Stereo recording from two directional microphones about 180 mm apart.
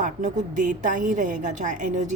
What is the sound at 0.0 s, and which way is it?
Speech, 45° right (ahead or behind).